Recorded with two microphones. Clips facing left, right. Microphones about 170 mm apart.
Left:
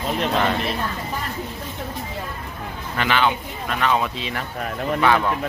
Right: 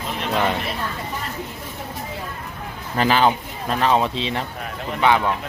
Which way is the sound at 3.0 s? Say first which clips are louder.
Right 3 dB; 35° right (ahead or behind).